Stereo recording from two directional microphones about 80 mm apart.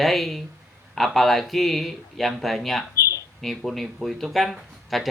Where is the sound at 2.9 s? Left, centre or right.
Left.